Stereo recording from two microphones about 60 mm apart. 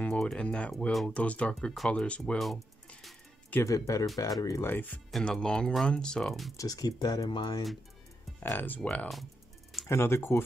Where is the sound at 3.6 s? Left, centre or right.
Left.